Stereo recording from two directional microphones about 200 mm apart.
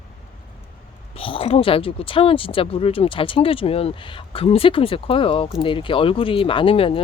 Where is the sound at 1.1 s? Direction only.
25° left (ahead or behind).